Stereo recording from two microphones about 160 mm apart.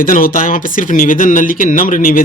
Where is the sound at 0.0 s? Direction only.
60° left (ahead or behind).